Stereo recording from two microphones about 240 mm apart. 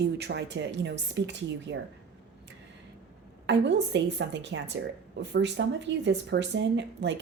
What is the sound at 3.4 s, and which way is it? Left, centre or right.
A woman's voice, right.